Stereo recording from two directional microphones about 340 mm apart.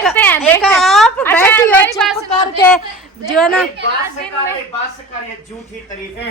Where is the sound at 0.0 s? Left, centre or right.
Centre.